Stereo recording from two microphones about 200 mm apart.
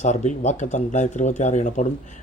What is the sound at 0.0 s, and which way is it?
A man's voice, 35° left (ahead or behind).